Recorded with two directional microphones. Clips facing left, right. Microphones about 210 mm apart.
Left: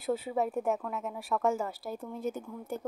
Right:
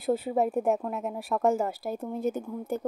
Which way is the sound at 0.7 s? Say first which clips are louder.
Right 5 dB; 35° right (ahead or behind).